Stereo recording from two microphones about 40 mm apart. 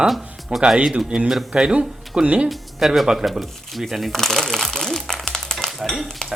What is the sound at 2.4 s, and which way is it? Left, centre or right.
Speech, centre.